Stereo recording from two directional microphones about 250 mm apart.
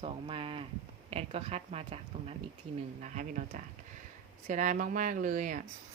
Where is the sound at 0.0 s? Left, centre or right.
Right.